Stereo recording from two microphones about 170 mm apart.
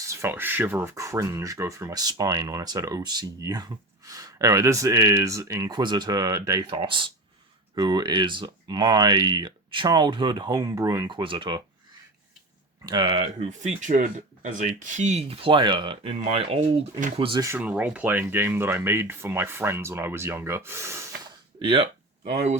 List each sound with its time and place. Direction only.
0.0 s speech: 15° right (ahead or behind)
12.9 s speech: 25° right (ahead or behind)
17.4 s speech: 10° right (ahead or behind)
21.6 s speech: 30° right (ahead or behind)